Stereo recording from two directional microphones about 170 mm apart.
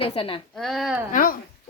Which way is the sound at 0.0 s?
35° left (ahead or behind).